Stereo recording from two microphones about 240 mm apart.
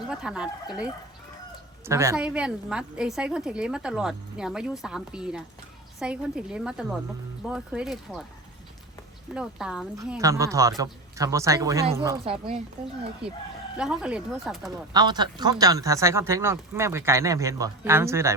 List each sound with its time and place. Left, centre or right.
0.1 s a woman's voice: centre
1.9 s a woman's voice: centre
9.3 s a woman's voice: centre
10.0 s speech: centre
12.2 s speech: right
13.7 s a woman's voice: centre
14.9 s speech: centre